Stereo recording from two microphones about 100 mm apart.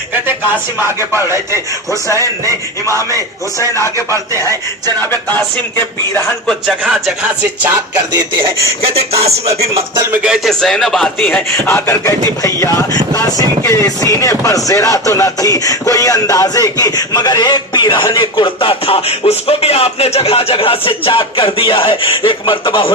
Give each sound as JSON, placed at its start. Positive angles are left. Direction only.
{"t": 1.1, "sound": "speech", "side_deg": -25}
{"t": 2.8, "sound": "speech", "side_deg": 30}
{"t": 4.9, "sound": "a sound", "side_deg": 20}
{"t": 6.7, "sound": "music", "side_deg": -10}
{"t": 10.1, "sound": "music", "side_deg": -5}
{"t": 10.5, "sound": "speech", "side_deg": 5}
{"t": 11.6, "sound": "speech", "side_deg": 25}